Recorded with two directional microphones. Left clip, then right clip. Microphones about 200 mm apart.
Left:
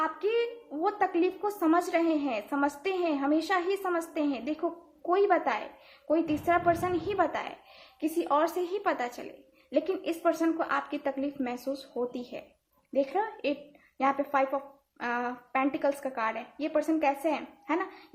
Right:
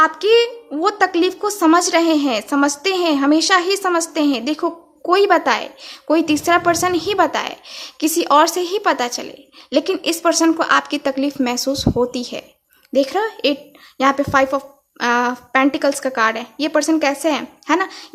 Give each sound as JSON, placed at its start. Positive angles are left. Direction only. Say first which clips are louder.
{"t": 0.0, "sound": "a woman's voice", "louder": "right 15 dB", "side_deg": -35}